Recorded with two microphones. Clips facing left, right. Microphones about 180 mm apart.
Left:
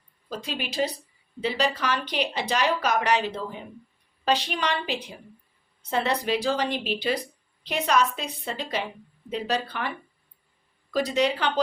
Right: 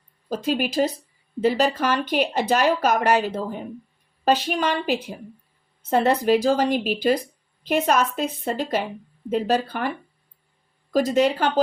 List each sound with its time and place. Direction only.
0.3 s speech: 45° right (ahead or behind)
10.9 s speech: 45° right (ahead or behind)